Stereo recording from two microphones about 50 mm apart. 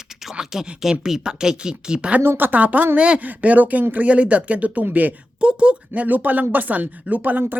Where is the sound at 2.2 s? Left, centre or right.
Right.